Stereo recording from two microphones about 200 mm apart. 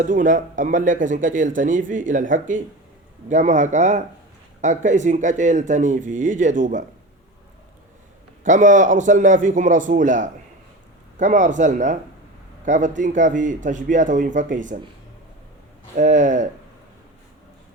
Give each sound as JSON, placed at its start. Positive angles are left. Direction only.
{"t": 0.0, "sound": "speech", "side_deg": -40}
{"t": 8.4, "sound": "a man's voice", "side_deg": -40}
{"t": 16.0, "sound": "speech", "side_deg": -40}